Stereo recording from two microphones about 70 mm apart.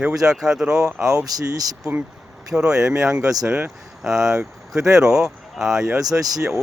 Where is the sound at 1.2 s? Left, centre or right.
Right.